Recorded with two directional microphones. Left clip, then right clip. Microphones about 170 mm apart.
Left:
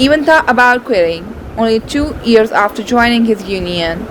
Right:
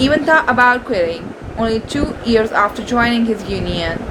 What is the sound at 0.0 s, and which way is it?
Speech, 50° left (ahead or behind).